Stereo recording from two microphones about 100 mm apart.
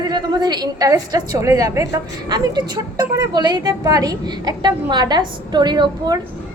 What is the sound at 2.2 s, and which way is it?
A woman's voice, 45° right (ahead or behind).